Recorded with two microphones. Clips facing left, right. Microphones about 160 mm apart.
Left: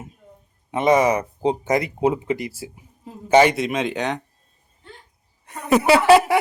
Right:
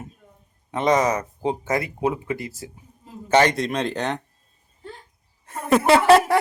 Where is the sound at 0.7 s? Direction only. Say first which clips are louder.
Left 3 dB; 10° left (ahead or behind).